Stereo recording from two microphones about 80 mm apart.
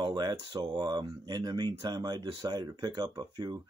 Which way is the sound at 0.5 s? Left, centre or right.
Right.